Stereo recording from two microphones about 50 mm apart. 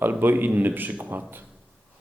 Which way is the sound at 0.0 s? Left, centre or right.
Right.